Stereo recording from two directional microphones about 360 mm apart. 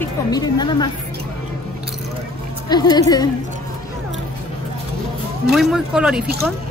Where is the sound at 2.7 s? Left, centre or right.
Centre.